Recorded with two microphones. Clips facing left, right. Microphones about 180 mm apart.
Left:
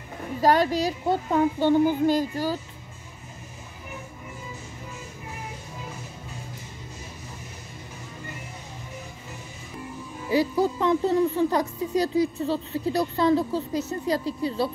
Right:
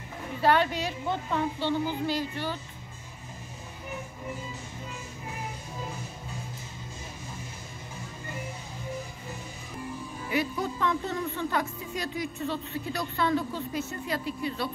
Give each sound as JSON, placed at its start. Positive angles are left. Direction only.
{"t": 0.4, "sound": "speech", "side_deg": 40}
{"t": 10.3, "sound": "speech", "side_deg": 35}